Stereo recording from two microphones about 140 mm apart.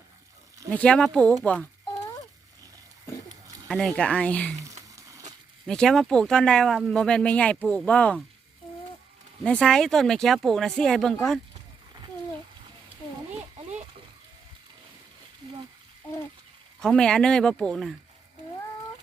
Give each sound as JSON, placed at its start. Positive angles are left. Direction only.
{"t": 0.7, "sound": "speech", "side_deg": 10}
{"t": 3.7, "sound": "speech", "side_deg": 5}
{"t": 4.7, "sound": "a sound", "side_deg": -25}
{"t": 5.6, "sound": "speech", "side_deg": 5}
{"t": 9.4, "sound": "speech", "side_deg": 5}
{"t": 16.8, "sound": "speech", "side_deg": 5}